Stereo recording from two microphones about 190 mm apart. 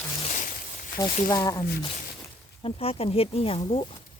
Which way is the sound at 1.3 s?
20° left (ahead or behind).